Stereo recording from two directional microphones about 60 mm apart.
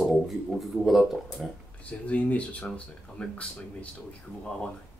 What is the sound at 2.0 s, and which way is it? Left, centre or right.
Speech, left.